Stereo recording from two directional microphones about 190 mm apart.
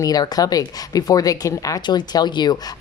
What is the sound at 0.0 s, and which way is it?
Speech, 20° left (ahead or behind).